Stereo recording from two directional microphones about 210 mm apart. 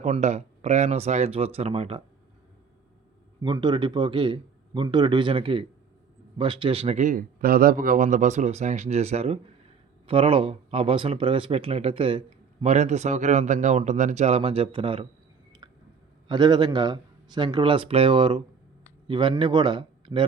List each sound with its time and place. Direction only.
0.0 s a man's voice: 35° right (ahead or behind)
3.4 s a man's voice: 20° right (ahead or behind)
16.3 s a man's voice: 20° right (ahead or behind)